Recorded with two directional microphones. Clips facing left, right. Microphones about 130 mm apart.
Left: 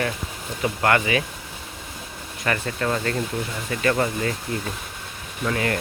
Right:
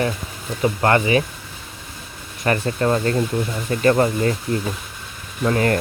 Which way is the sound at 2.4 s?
35° right (ahead or behind).